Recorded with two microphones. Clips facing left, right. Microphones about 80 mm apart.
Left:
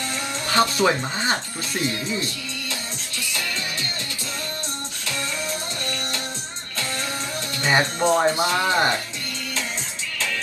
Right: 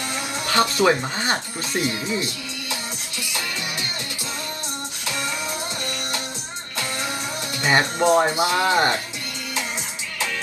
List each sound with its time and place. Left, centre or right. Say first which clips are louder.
0.6 s speech: right 1 dB; centre
7.6 s speech: right 1 dB; centre